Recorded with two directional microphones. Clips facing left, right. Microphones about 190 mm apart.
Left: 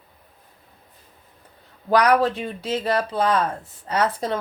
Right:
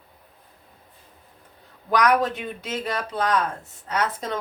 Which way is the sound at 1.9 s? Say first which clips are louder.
Left 3 dB; 30° left (ahead or behind).